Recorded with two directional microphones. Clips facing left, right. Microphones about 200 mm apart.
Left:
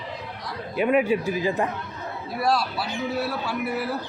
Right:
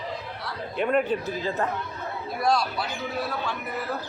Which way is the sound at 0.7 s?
5° left (ahead or behind).